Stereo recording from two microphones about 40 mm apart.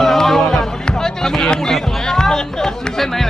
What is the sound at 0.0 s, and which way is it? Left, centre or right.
Music, centre.